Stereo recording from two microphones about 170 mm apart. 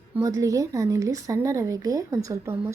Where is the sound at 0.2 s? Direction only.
20° right (ahead or behind).